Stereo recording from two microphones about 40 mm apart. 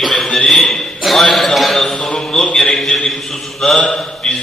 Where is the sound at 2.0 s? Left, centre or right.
Left.